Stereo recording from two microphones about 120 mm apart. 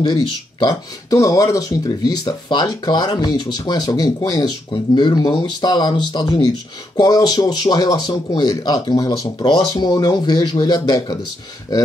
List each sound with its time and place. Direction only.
0.0 s speech: 35° left (ahead or behind)